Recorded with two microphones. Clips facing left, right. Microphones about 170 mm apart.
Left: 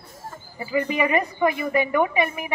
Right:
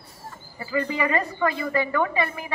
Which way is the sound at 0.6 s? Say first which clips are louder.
Left 3 dB; 20° left (ahead or behind).